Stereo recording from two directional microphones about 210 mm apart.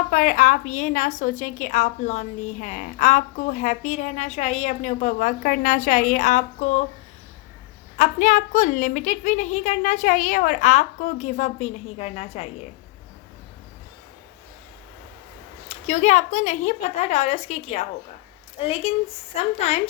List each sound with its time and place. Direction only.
0.1 s a woman's voice: 40° left (ahead or behind)
7.9 s a woman's voice: 35° left (ahead or behind)
15.7 s a woman's voice: 35° left (ahead or behind)